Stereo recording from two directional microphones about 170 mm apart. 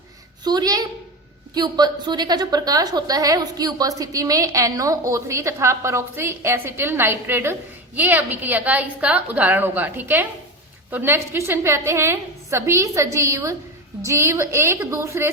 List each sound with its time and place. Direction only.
0.4 s a woman's voice: 25° right (ahead or behind)